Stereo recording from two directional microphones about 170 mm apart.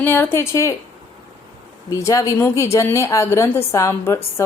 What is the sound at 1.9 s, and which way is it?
A woman's voice, 20° left (ahead or behind).